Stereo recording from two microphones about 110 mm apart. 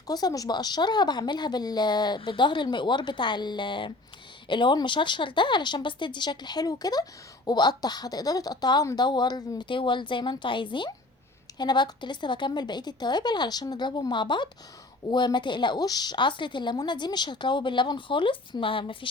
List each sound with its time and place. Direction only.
0.1 s speech: 35° left (ahead or behind); by 18.9 s 55° left (ahead or behind)